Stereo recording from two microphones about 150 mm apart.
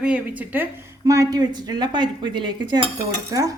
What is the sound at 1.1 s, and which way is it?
A woman's voice, 25° right (ahead or behind).